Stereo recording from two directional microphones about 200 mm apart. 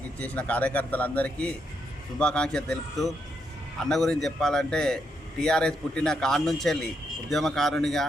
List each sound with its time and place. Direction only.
0.2 s a man's voice: 5° left (ahead or behind)